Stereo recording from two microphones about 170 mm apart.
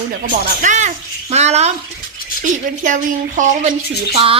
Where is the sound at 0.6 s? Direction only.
45° right (ahead or behind).